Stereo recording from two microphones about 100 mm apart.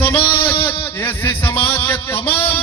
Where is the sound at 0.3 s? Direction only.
55° left (ahead or behind).